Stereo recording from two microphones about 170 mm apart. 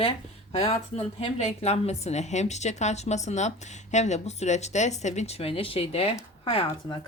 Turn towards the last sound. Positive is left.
turn(degrees=30)  # may be behind; listen again after turning